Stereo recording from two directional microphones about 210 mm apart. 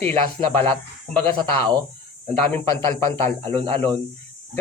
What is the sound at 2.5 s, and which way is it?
Speech, 15° left (ahead or behind).